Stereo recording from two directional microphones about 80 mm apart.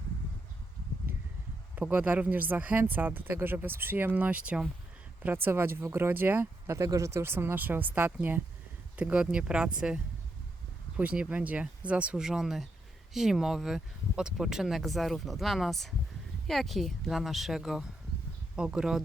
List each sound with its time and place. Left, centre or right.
1.7 s speech: centre